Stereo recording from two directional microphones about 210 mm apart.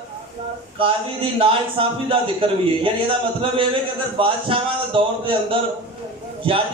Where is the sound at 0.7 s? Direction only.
25° right (ahead or behind).